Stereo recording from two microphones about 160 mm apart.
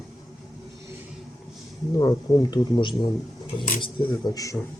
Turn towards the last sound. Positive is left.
turn(degrees=20)  # may be behind; listen again after turning